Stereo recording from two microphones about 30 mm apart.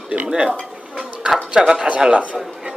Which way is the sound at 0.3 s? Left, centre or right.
Right.